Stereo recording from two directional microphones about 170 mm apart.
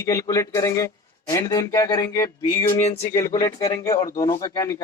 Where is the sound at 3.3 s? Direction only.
25° left (ahead or behind).